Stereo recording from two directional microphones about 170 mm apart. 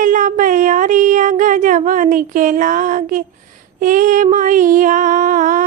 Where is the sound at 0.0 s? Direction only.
50° right (ahead or behind).